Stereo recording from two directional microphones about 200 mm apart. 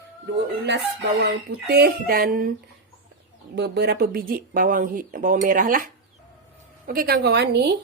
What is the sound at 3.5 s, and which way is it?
Speech, 55° right (ahead or behind).